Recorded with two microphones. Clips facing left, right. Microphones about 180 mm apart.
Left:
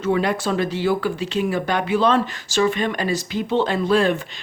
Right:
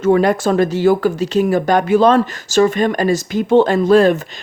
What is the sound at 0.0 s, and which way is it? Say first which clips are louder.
Speech: right 7 dB; 45° right (ahead or behind).